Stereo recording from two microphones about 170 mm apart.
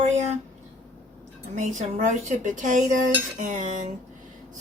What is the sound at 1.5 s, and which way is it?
Dishes, 45° right (ahead or behind).